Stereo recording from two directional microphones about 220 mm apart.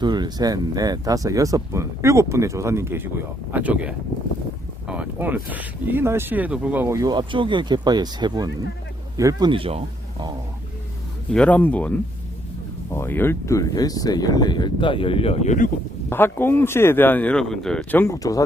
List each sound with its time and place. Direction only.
0.0 s speech: 20° right (ahead or behind)
11.3 s speech: 5° left (ahead or behind); by 15.7 s 35° left (ahead or behind)
16.0 s speech: 10° left (ahead or behind)